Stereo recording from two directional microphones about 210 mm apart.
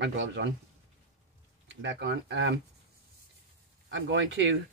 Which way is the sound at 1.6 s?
60° right (ahead or behind).